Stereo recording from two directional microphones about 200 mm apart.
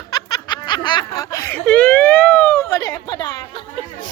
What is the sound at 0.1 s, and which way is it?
Snicker, 20° left (ahead or behind).